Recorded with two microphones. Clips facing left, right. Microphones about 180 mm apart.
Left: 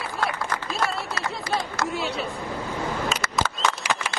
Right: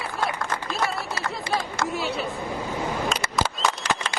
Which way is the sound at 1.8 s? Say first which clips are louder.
Even; centre (ahead or behind).